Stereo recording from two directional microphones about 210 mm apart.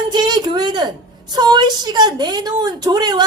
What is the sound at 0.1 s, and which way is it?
A woman's voice, 20° right (ahead or behind).